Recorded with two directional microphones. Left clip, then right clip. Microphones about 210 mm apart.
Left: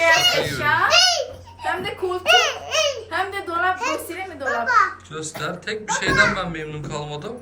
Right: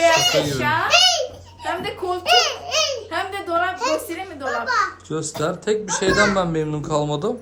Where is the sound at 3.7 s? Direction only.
15° right (ahead or behind).